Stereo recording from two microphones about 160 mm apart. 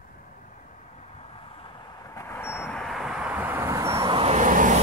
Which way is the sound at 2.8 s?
Centre (ahead or behind).